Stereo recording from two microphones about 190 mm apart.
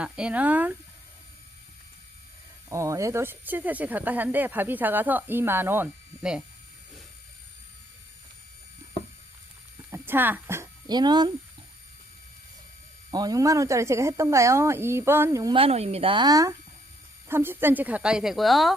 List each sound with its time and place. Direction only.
0.0 s speech: 5° right (ahead or behind)
2.6 s speech: 15° right (ahead or behind)
9.9 s a sound: 10° right (ahead or behind)
13.1 s speech: 20° right (ahead or behind)
15.5 s speech: 30° right (ahead or behind); by 18.7 s centre (ahead or behind)